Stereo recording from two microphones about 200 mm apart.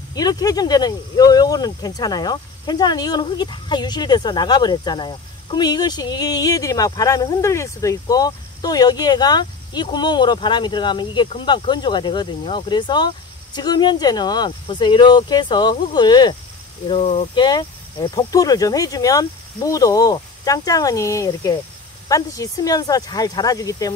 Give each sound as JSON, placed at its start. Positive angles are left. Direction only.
{"t": 0.1, "sound": "speech", "side_deg": 20}